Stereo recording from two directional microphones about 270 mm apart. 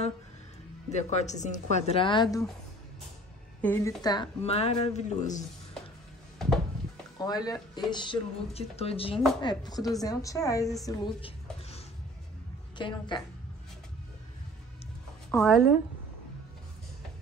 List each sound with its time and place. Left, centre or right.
0.8 s a woman's voice: left
3.6 s a woman's voice: centre; by 5.4 s left
6.3 s music: centre
7.2 s a woman's voice: centre
12.7 s speech: centre
15.3 s speech: centre